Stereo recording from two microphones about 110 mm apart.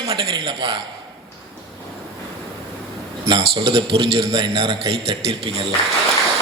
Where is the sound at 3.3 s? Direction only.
50° right (ahead or behind).